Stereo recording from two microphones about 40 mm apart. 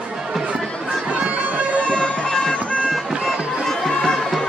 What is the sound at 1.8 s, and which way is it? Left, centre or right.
Music, left.